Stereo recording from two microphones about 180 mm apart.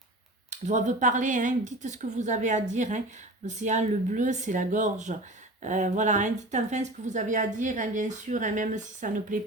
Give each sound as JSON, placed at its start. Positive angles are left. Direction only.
{"t": 0.5, "sound": "speech", "side_deg": -40}